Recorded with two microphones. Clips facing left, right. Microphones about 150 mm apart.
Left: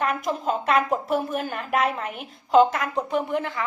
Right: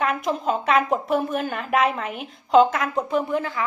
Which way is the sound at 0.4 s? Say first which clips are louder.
Right 1 dB; centre (ahead or behind).